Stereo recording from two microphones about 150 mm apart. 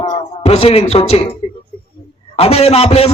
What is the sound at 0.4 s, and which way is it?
Speech, 45° left (ahead or behind).